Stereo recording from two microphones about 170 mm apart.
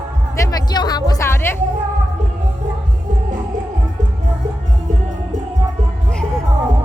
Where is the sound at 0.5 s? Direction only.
25° left (ahead or behind).